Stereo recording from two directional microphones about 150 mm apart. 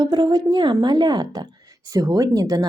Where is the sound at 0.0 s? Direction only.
30° right (ahead or behind).